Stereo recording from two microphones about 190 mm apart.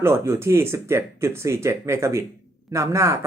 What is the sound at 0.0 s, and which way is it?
Speech, 15° right (ahead or behind).